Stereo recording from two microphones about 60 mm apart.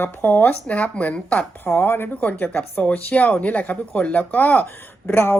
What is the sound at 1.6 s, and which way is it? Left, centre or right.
Speech, left.